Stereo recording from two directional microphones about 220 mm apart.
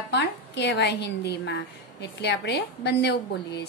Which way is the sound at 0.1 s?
50° left (ahead or behind).